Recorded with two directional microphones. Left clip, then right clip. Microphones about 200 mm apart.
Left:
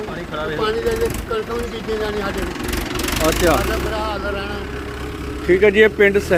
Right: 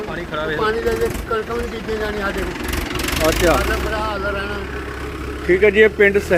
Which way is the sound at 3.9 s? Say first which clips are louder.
Right 1 dB; 10° left (ahead or behind).